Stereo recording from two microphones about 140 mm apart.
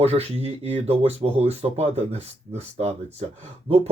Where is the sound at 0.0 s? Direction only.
45° right (ahead or behind).